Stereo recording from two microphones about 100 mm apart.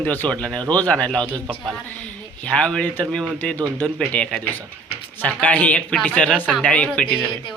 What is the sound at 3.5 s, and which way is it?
Speech, 35° right (ahead or behind).